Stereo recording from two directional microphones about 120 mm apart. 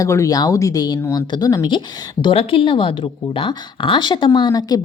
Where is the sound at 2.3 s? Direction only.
50° left (ahead or behind).